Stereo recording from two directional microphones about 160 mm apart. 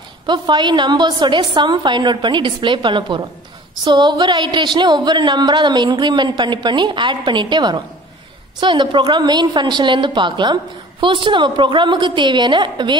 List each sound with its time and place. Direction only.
0.3 s a woman's voice: 25° right (ahead or behind)